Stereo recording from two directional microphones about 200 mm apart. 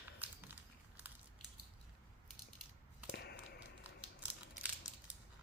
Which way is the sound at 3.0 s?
55° left (ahead or behind).